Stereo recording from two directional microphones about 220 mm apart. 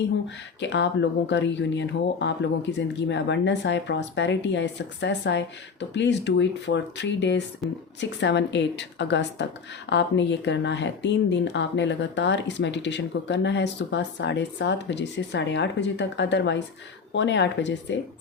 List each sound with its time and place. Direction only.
0.6 s speech: 55° left (ahead or behind)